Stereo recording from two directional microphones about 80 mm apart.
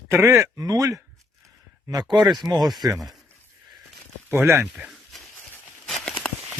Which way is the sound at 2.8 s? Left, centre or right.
Right.